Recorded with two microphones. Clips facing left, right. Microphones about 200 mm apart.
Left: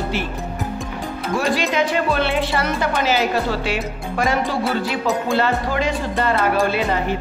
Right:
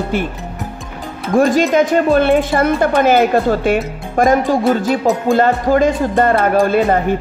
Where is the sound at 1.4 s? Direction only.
45° right (ahead or behind).